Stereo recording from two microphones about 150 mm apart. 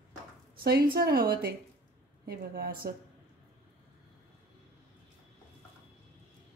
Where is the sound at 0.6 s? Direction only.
90° right.